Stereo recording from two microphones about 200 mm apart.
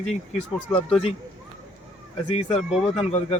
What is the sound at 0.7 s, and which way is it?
Speech, 30° left (ahead or behind).